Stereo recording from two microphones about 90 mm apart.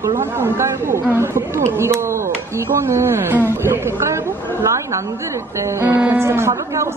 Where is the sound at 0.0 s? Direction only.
25° right (ahead or behind).